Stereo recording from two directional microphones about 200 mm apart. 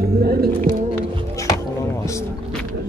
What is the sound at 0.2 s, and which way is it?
Music, 50° right (ahead or behind).